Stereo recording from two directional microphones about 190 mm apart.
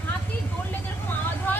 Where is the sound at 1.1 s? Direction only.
10° left (ahead or behind).